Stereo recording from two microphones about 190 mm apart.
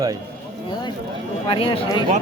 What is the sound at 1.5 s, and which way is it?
Speech, 30° left (ahead or behind).